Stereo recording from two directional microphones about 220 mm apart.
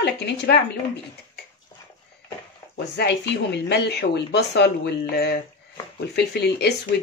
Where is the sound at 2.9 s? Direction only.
50° left (ahead or behind).